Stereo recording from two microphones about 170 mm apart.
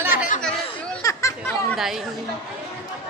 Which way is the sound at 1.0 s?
20° left (ahead or behind).